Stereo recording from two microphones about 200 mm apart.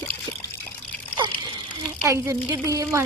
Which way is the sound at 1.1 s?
25° right (ahead or behind).